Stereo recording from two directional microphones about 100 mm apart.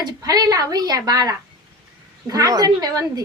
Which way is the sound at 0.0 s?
40° right (ahead or behind).